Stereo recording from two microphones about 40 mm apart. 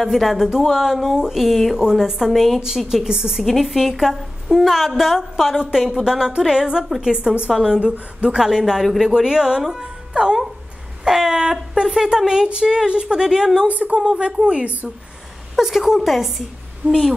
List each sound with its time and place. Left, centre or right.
0.0 s a woman's voice: centre
3.4 s a woman's voice: centre
11.1 s a sound: centre
12.2 s a woman's voice: centre
13.7 s a woman's voice: right
13.9 s a woman's voice: right
15.5 s a woman's voice: centre